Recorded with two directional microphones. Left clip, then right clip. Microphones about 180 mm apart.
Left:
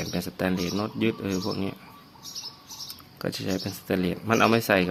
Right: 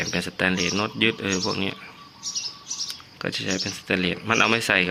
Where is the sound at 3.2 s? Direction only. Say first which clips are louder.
Right 3 dB; 20° left (ahead or behind).